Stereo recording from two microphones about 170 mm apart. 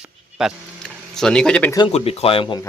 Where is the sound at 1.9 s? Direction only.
40° left (ahead or behind).